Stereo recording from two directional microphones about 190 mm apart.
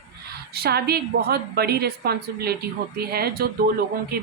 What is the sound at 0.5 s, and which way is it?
A woman's voice, 55° right (ahead or behind).